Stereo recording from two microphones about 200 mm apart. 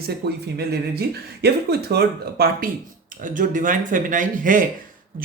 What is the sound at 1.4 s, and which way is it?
Speech, 55° right (ahead or behind).